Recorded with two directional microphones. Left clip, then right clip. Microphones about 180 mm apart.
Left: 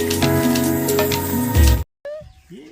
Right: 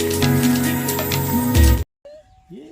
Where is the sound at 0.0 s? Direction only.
Centre (ahead or behind).